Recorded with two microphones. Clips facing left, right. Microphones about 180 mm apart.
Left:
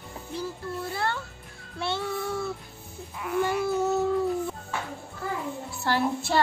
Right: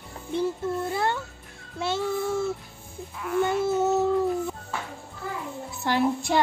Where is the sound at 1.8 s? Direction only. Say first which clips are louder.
Right 3 dB; 20° right (ahead or behind).